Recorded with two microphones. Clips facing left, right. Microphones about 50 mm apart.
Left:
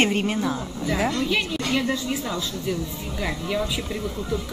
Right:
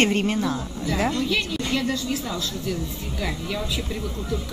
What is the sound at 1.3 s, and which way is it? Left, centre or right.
A woman's voice, centre.